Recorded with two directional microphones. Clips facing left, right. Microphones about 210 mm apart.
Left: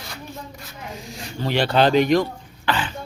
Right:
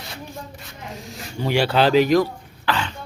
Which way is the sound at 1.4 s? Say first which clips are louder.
Even; 10° right (ahead or behind).